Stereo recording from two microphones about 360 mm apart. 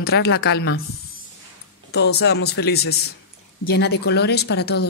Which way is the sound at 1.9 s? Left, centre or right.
Left.